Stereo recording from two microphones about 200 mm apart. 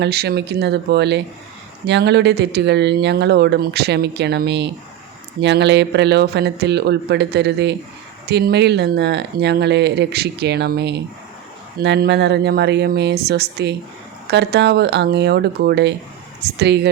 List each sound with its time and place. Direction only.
0.0 s speech: 55° right (ahead or behind)